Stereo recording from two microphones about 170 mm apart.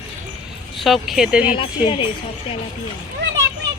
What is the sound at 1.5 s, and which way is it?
Speech, 30° left (ahead or behind).